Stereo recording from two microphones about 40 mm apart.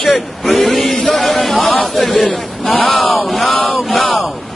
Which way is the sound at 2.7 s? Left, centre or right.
Left.